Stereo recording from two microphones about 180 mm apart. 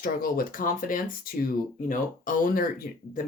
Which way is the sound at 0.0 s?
55° left (ahead or behind).